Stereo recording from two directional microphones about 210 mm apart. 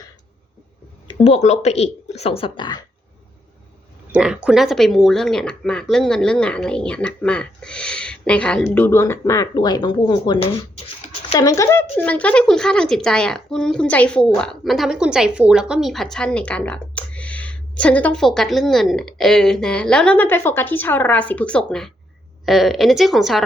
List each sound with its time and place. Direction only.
1.0 s speech: 25° left (ahead or behind)
4.1 s a woman's voice: 5° right (ahead or behind)